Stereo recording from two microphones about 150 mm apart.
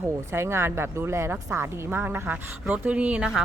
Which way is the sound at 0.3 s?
15° right (ahead or behind).